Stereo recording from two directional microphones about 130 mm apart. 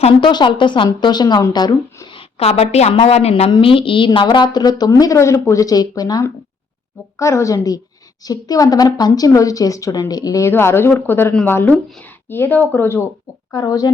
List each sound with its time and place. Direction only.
0.2 s a woman's voice: 35° left (ahead or behind); by 13.1 s 15° left (ahead or behind)
13.5 s a woman's voice: 30° left (ahead or behind)